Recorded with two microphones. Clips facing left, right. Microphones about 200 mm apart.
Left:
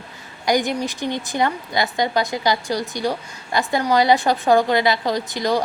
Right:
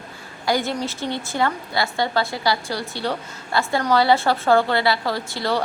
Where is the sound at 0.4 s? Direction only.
15° left (ahead or behind).